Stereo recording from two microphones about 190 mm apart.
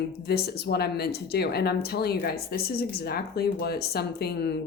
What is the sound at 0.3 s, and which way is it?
Speech, 55° left (ahead or behind).